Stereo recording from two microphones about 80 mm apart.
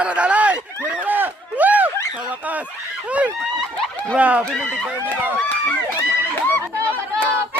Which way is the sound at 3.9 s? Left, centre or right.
Centre.